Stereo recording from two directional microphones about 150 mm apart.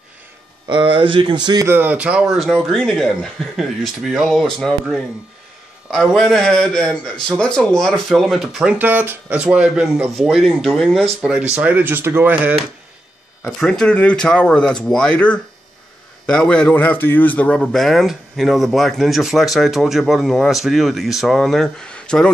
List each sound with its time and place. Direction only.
0.7 s speech: 35° right (ahead or behind)
1.7 s speech: 10° right (ahead or behind)
8.7 s speech: 15° right (ahead or behind)
13.4 s speech: 5° left (ahead or behind)